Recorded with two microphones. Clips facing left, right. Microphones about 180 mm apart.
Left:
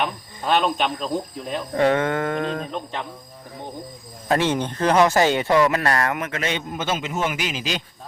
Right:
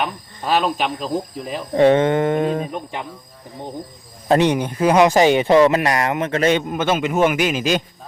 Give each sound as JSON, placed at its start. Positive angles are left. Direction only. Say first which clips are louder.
{"t": 0.0, "sound": "speech", "louder": "right 1 dB", "side_deg": -5}
{"t": 1.7, "sound": "speech", "louder": "right 6 dB", "side_deg": -20}
{"t": 4.3, "sound": "speech", "louder": "right 5 dB", "side_deg": -15}
{"t": 6.4, "sound": "a man's voice", "louder": "right 9 dB", "side_deg": -50}